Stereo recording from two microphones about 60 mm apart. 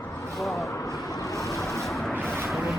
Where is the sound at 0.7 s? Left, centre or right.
Left.